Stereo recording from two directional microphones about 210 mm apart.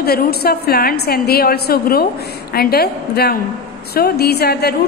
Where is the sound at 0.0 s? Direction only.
50° left (ahead or behind).